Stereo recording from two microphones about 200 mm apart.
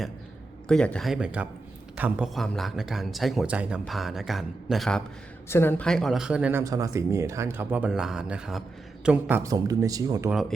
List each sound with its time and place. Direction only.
0.7 s speech: 5° left (ahead or behind); by 10.2 s 20° right (ahead or behind)